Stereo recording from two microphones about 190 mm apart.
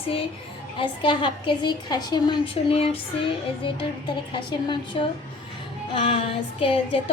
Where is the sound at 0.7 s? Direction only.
25° left (ahead or behind).